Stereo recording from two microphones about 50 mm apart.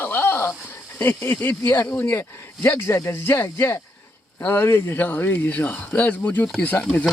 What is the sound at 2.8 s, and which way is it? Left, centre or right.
Speech, left.